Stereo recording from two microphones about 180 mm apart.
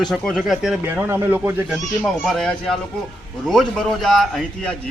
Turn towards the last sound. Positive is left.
turn(degrees=0)  # may be behind; listen again after turning